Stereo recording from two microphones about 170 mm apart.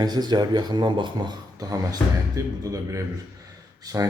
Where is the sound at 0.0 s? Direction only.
25° right (ahead or behind).